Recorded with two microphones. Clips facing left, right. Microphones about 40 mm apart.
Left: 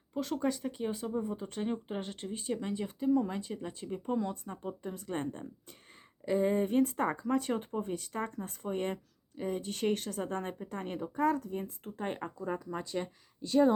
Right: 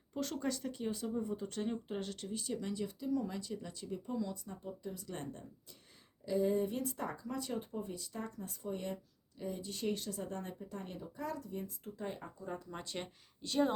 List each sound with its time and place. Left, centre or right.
0.1 s speech: centre; by 4.1 s left
4.1 s speech: left